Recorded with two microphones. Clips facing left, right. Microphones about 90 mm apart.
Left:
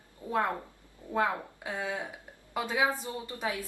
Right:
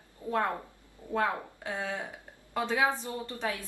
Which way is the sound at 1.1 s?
15° left (ahead or behind).